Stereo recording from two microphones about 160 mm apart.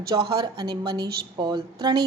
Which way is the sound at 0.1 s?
25° right (ahead or behind).